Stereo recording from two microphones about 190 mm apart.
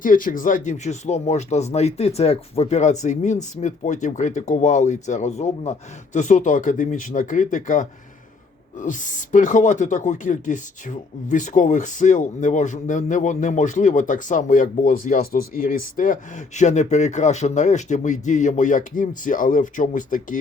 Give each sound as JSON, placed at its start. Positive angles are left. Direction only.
{"t": 0.0, "sound": "speech", "side_deg": 45}